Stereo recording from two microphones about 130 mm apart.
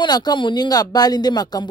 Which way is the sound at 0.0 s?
35° left (ahead or behind).